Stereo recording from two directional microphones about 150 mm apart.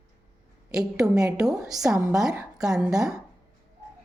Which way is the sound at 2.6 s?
5° right (ahead or behind).